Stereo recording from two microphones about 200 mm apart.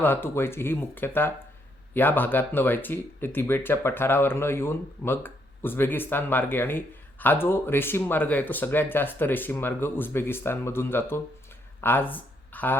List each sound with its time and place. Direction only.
0.0 s speech: 10° left (ahead or behind)